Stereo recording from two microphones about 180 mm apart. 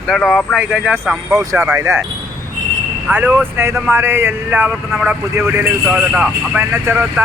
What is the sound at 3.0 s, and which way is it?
Speech, 10° right (ahead or behind).